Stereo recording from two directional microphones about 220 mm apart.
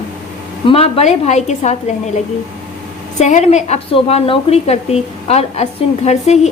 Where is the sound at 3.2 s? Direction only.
30° left (ahead or behind).